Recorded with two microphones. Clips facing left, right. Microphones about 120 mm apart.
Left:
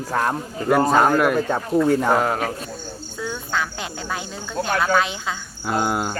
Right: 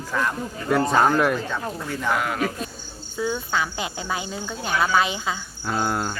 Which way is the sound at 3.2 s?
5° right (ahead or behind).